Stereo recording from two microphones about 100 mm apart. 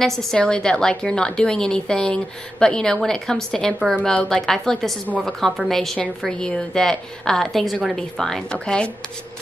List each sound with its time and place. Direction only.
0.0 s a woman's voice: 5° left (ahead or behind)